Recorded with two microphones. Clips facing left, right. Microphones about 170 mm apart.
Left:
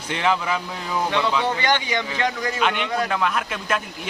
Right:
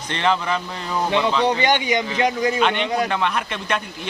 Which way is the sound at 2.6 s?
5° left (ahead or behind).